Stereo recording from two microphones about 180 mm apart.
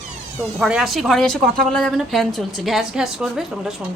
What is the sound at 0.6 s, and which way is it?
A woman's voice, centre (ahead or behind).